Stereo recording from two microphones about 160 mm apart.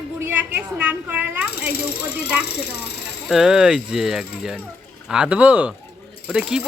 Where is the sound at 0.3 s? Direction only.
10° right (ahead or behind).